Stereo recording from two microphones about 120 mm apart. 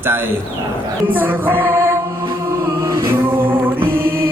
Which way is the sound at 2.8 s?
30° right (ahead or behind).